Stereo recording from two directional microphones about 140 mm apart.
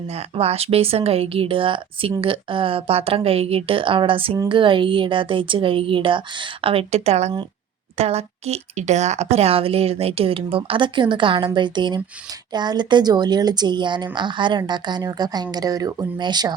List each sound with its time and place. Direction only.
0.1 s a woman's voice: 45° right (ahead or behind); by 16.6 s 30° right (ahead or behind)